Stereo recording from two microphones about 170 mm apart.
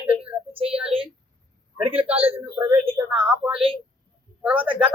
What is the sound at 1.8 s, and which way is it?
Speech, 35° right (ahead or behind).